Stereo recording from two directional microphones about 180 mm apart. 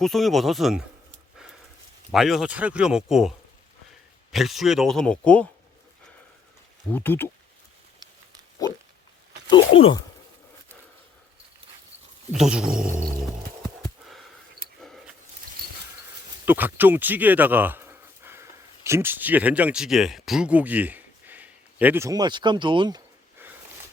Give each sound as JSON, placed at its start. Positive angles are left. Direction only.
{"t": 0.0, "sound": "speech", "side_deg": 0}
{"t": 2.1, "sound": "speech", "side_deg": 0}
{"t": 6.9, "sound": "speech", "side_deg": 10}
{"t": 9.5, "sound": "speech", "side_deg": 25}
{"t": 12.3, "sound": "speech", "side_deg": -5}
{"t": 14.8, "sound": "a sound", "side_deg": 0}
{"t": 16.5, "sound": "speech", "side_deg": -10}